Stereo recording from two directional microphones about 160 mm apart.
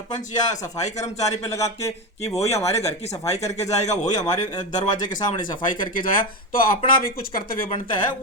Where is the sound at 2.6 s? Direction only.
40° left (ahead or behind).